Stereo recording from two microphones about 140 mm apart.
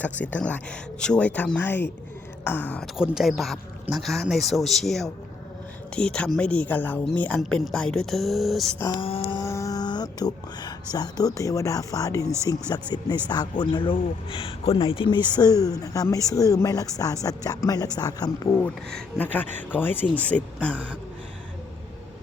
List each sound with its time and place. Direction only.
0.0 s speech: 10° left (ahead or behind)
2.8 s speech: 5° right (ahead or behind)
8.8 s speech: 30° left (ahead or behind)
9.0 s a sound: 40° left (ahead or behind)
9.4 s music: 20° left (ahead or behind)
10.9 s speech: 25° left (ahead or behind)
18.6 s speech: 5° left (ahead or behind)